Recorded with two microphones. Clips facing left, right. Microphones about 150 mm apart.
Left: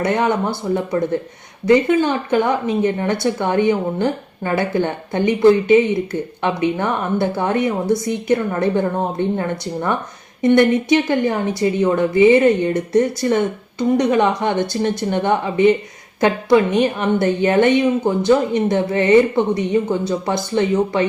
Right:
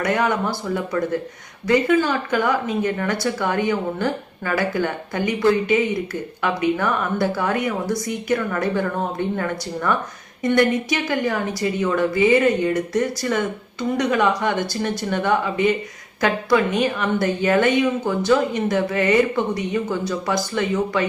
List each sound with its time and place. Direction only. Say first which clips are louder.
0.0 s speech: left 3 dB; 25° left (ahead or behind)